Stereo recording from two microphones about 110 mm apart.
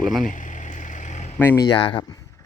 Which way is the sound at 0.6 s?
90° left.